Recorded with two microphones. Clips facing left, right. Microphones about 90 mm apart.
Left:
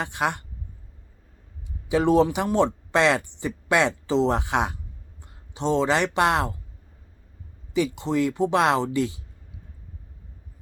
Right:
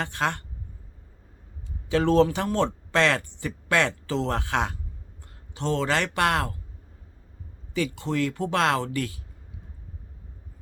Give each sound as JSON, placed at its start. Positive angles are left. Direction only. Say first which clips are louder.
{"t": 0.0, "sound": "speech", "louder": "left 1 dB", "side_deg": 15}
{"t": 1.9, "sound": "speech", "louder": "left 1 dB", "side_deg": 15}
{"t": 7.7, "sound": "speech", "louder": "left 3 dB", "side_deg": 20}